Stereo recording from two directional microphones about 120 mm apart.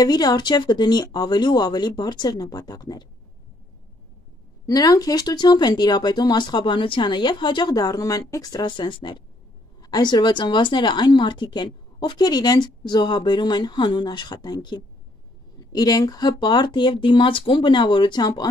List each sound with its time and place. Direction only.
0.0 s speech: 35° left (ahead or behind)
4.6 s speech: 30° left (ahead or behind)